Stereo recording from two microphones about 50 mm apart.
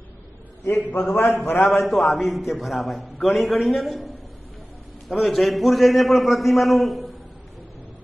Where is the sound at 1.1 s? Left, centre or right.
Left.